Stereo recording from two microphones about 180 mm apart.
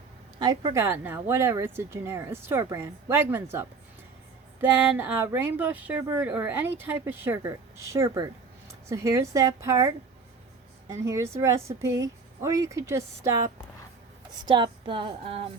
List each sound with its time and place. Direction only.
0.3 s a woman's voice: 25° right (ahead or behind)
4.8 s a woman's voice: 10° right (ahead or behind)
10.9 s a woman's voice: 15° right (ahead or behind)
14.4 s speech: 25° right (ahead or behind)